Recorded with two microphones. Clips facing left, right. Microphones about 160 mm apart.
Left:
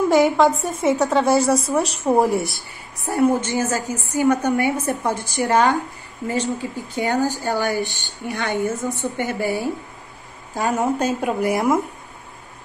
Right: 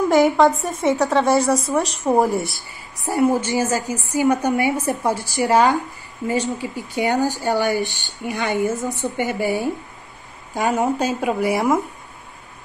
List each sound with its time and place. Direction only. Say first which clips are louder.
0.1 s a woman's voice: right 2 dB; centre (ahead or behind); by 9.7 s 15° right (ahead or behind)
10.7 s a woman's voice: even; centre (ahead or behind)